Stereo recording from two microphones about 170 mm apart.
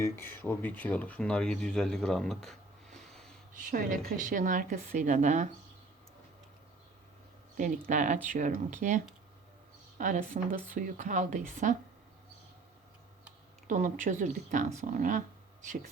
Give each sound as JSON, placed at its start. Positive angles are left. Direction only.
{"t": 0.0, "sound": "speech", "side_deg": 15}
{"t": 3.5, "sound": "a woman's voice", "side_deg": -55}
{"t": 7.9, "sound": "a woman's voice", "side_deg": -45}
{"t": 10.0, "sound": "a woman's voice", "side_deg": -50}
{"t": 13.7, "sound": "a woman's voice", "side_deg": -50}